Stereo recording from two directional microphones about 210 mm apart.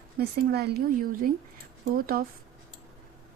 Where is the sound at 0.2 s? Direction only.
50° right (ahead or behind).